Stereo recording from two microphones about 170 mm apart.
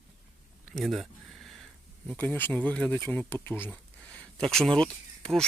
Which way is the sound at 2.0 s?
10° left (ahead or behind).